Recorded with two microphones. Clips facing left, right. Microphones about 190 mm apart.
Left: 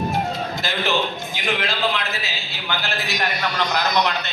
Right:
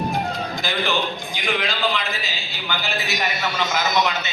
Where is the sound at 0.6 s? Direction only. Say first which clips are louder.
Left 1 dB; centre (ahead or behind).